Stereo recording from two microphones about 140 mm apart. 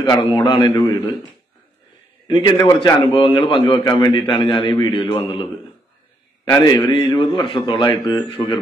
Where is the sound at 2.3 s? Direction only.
35° left (ahead or behind).